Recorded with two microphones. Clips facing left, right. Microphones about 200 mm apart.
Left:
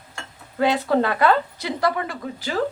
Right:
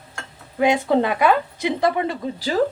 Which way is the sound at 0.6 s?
15° right (ahead or behind).